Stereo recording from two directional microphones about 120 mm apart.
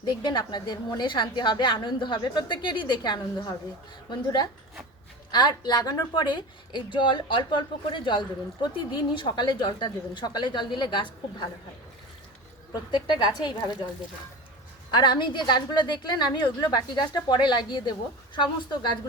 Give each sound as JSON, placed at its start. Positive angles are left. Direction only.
{"t": 0.0, "sound": "a woman's voice", "side_deg": 40}
{"t": 12.9, "sound": "a woman's voice", "side_deg": 40}
{"t": 14.8, "sound": "a woman's voice", "side_deg": 40}